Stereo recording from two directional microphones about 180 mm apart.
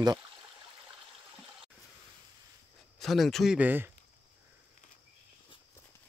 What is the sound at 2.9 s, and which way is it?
Speech, centre (ahead or behind).